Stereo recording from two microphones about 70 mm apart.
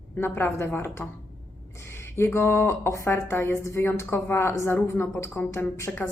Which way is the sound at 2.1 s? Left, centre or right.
Left.